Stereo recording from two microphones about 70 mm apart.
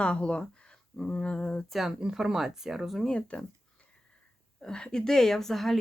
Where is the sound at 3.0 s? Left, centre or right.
Centre.